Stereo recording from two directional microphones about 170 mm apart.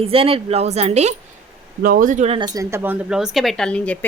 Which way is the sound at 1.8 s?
55° right (ahead or behind).